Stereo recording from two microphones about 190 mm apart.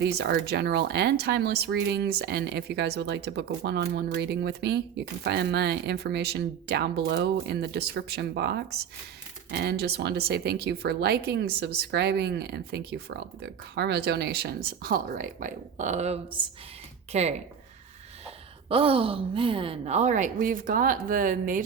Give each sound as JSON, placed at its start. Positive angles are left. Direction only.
{"t": 0.0, "sound": "a woman's voice", "side_deg": -55}